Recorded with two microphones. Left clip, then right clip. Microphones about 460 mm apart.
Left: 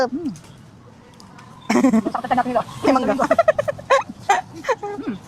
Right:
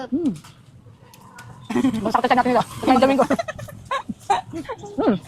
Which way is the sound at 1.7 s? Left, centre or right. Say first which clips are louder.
Left 5 dB; left.